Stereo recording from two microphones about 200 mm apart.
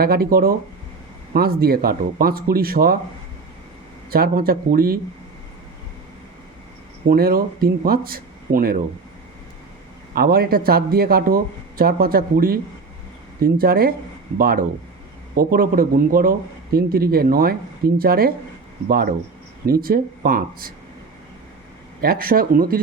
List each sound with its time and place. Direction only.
0.0 s speech: 50° right (ahead or behind)
4.1 s speech: 50° right (ahead or behind)
7.1 s speech: 50° right (ahead or behind)
10.2 s speech: 50° right (ahead or behind)
19.6 s speech: 45° right (ahead or behind)
22.0 s speech: 50° right (ahead or behind)